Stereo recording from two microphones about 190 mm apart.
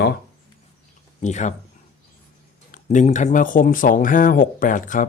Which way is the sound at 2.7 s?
40° left (ahead or behind).